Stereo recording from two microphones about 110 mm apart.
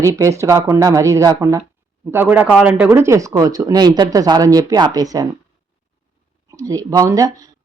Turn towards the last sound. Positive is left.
turn(degrees=-35)  # may be behind; listen again after turning